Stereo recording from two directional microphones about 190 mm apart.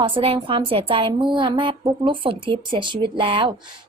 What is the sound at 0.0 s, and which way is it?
Speech, 30° right (ahead or behind).